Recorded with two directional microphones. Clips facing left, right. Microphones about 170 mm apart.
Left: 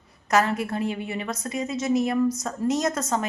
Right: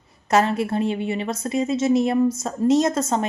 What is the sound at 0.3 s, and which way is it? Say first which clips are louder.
A woman's voice: right 3 dB; 30° right (ahead or behind).